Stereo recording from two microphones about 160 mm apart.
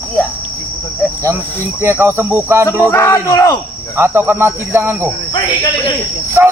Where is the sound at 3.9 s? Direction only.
15° right (ahead or behind).